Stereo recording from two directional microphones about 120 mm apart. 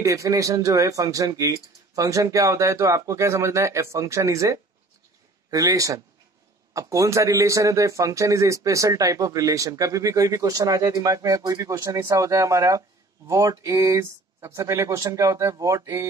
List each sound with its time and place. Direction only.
0.0 s a man's voice: 25° right (ahead or behind)